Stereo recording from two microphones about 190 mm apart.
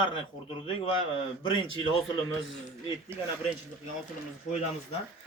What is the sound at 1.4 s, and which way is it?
Speech, 25° left (ahead or behind).